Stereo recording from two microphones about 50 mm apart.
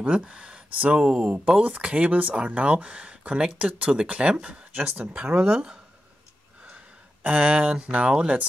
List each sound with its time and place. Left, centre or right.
0.2 s speech: centre
4.7 s speech: right
5.0 s speech: centre
7.2 s speech: right